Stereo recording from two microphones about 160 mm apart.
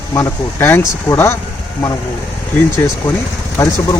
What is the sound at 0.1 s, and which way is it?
Speech, 15° left (ahead or behind).